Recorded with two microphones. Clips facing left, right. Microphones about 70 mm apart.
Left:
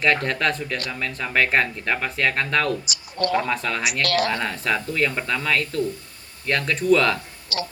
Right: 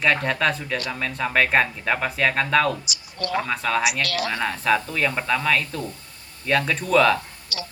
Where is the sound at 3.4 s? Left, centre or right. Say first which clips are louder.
Right 2 dB; centre.